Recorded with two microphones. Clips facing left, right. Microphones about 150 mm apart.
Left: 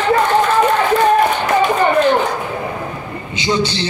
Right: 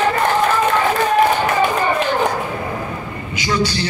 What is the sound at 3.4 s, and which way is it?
Speech, 25° left (ahead or behind).